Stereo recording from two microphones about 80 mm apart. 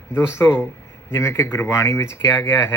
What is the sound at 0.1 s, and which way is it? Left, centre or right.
Speech, left.